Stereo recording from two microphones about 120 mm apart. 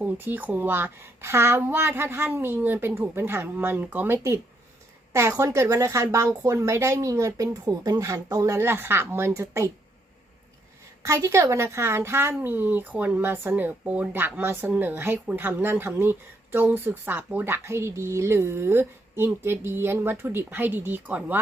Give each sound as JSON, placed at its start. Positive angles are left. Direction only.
{"t": 0.0, "sound": "speech", "side_deg": -15}
{"t": 11.0, "sound": "a woman's voice", "side_deg": -25}